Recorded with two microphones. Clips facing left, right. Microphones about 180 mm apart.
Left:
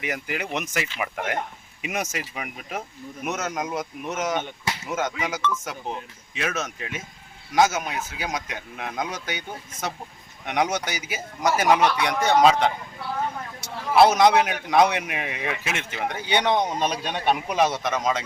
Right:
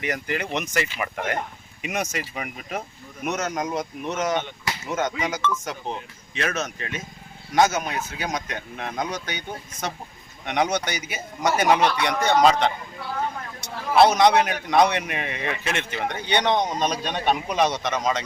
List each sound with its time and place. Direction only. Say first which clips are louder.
0.0 s a man's voice: right 2 dB; 5° left (ahead or behind)
10.4 s a man's voice: right 1 dB; 5° left (ahead or behind)